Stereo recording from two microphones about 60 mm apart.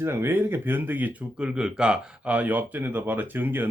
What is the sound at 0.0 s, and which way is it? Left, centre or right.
Speech, right.